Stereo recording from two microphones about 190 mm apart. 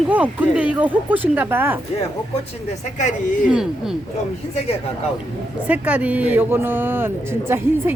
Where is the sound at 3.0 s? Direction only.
40° left (ahead or behind).